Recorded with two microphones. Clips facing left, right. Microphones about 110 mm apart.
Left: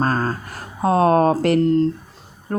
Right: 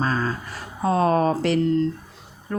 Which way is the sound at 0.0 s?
45° left (ahead or behind).